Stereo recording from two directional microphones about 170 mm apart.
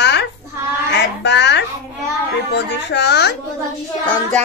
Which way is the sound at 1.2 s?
90° left.